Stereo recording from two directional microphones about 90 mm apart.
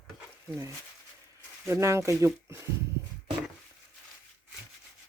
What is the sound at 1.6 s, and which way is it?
Speech, 30° right (ahead or behind).